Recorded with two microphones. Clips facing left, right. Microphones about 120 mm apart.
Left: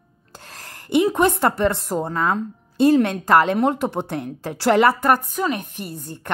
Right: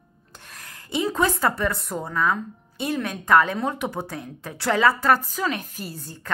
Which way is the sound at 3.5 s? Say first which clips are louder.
Left 6 dB; 30° left (ahead or behind).